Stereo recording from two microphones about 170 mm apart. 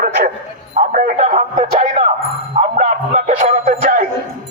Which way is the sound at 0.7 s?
50° right (ahead or behind).